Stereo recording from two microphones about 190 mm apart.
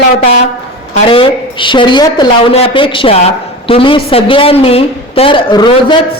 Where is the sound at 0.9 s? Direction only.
30° left (ahead or behind).